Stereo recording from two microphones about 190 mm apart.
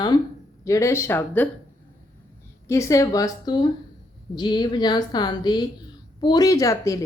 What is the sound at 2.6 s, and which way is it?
A woman's voice, 15° left (ahead or behind).